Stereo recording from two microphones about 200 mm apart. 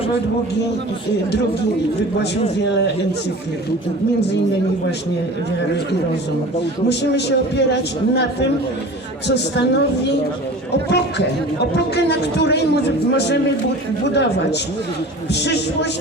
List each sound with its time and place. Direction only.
6.6 s a man's voice: 55° left (ahead or behind)